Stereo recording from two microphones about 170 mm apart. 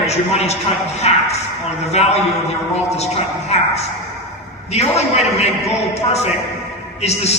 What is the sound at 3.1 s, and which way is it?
Speech, 40° left (ahead or behind).